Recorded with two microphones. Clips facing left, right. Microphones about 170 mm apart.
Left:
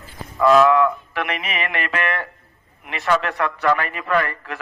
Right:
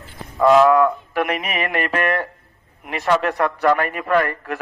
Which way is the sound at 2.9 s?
40° right (ahead or behind).